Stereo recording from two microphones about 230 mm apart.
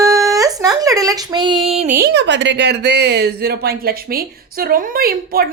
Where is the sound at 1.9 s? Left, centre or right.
Right.